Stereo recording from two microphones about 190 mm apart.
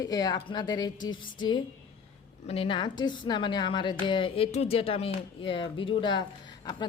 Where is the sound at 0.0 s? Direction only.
20° left (ahead or behind).